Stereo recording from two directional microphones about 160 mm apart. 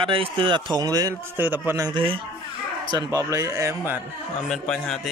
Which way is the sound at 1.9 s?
35° right (ahead or behind).